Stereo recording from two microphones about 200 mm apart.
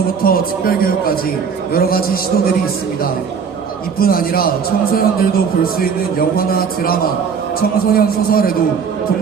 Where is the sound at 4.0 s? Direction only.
45° left (ahead or behind).